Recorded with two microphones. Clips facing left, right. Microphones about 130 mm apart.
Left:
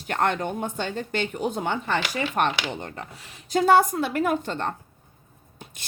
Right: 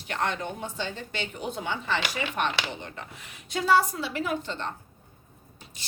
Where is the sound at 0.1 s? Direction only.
50° left (ahead or behind).